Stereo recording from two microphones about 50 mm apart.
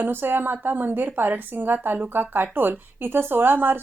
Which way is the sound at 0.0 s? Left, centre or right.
Right.